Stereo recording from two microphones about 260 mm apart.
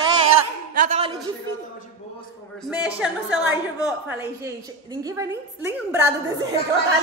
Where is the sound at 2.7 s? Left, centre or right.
Centre.